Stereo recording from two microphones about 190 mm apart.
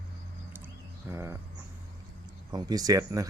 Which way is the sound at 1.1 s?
15° right (ahead or behind).